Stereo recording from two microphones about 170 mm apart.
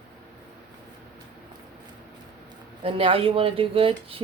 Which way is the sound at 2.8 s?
35° right (ahead or behind).